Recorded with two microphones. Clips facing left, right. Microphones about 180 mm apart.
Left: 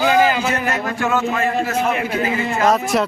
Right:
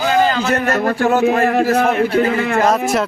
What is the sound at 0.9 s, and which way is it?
Speech, 35° right (ahead or behind).